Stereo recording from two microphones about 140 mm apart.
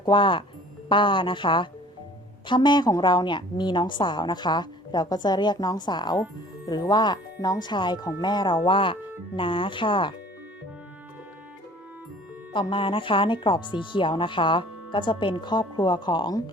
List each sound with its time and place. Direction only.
0.0 s speech: 35° left (ahead or behind)
12.5 s speech: 40° left (ahead or behind)